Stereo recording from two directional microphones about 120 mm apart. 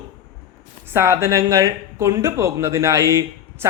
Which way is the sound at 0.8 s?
20° right (ahead or behind).